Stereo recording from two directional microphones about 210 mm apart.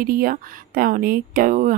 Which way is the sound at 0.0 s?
45° right (ahead or behind).